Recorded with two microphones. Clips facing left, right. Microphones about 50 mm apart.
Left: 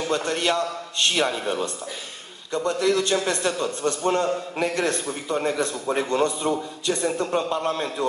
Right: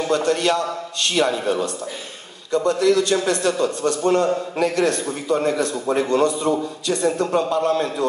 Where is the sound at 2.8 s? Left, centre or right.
Left.